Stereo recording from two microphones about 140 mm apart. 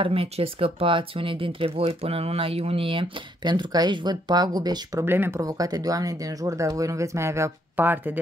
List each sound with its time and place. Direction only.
0.0 s speech: 40° right (ahead or behind)
5.0 s speech: 15° right (ahead or behind)